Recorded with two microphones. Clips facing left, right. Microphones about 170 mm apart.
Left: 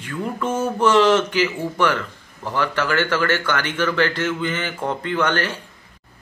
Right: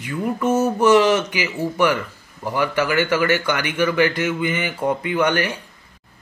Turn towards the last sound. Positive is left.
turn(degrees=-10)  # may be behind; listen again after turning